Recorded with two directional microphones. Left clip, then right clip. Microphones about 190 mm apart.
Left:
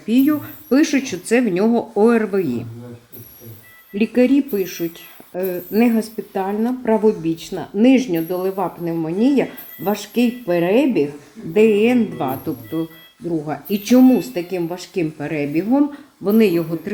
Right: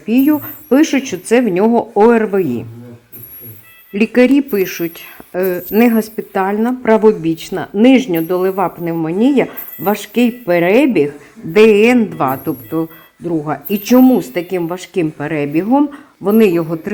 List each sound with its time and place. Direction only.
0.1 s a woman's voice: 5° right (ahead or behind)
3.9 s speech: 15° right (ahead or behind)
13.5 s speech: 5° right (ahead or behind)